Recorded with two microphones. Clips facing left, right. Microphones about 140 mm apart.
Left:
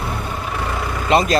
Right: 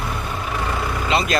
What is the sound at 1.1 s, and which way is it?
Speech, 45° left (ahead or behind).